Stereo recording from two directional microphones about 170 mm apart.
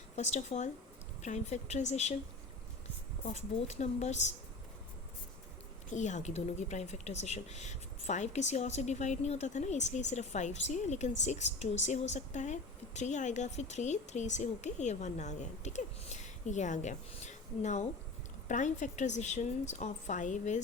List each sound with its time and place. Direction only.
0.2 s a woman's voice: 40° left (ahead or behind)
3.2 s a woman's voice: 40° left (ahead or behind)
5.9 s speech: 45° left (ahead or behind)